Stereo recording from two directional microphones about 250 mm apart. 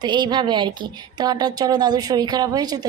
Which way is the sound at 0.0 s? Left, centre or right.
Centre.